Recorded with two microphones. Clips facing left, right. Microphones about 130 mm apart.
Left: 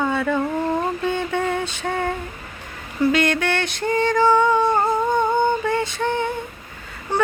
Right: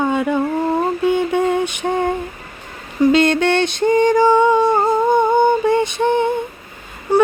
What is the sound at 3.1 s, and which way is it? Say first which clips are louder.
Music: right 6 dB; 25° right (ahead or behind).